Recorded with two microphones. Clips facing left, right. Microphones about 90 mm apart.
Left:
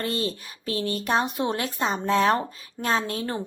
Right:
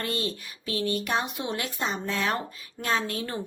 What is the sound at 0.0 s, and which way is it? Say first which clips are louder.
A woman's voice: left 3 dB; 30° left (ahead or behind).